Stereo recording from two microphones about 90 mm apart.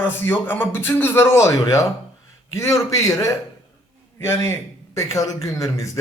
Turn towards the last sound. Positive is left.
turn(degrees=40)  # may be behind; listen again after turning